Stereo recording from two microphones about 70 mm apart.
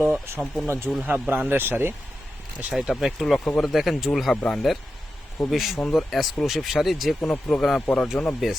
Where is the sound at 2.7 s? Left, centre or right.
Centre.